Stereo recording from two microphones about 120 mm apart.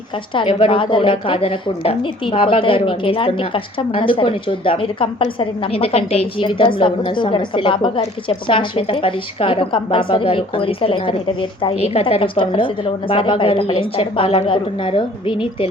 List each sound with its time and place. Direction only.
0.3 s a woman's voice: 45° left (ahead or behind)